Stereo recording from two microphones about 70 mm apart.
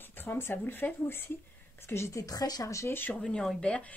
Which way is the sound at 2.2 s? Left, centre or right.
Left.